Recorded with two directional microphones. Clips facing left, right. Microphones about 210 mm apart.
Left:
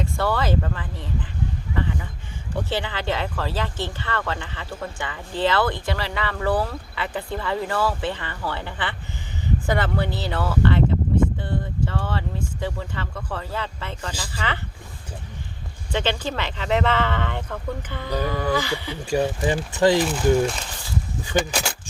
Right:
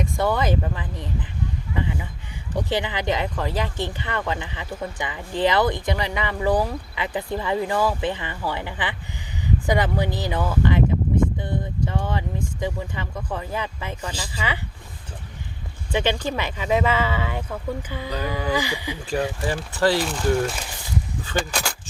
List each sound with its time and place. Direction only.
0.0 s speech: 15° right (ahead or behind)
1.7 s a sound: 15° right (ahead or behind)
2.6 s speech: 15° right (ahead or behind)
15.9 s speech: 15° right (ahead or behind)
19.4 s speech: 20° left (ahead or behind)
20.1 s speech: centre (ahead or behind)
21.3 s speech: 15° left (ahead or behind)